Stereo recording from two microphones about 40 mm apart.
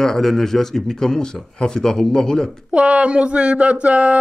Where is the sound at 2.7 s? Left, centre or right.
Right.